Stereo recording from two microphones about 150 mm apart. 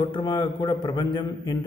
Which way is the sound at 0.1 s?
30° left (ahead or behind).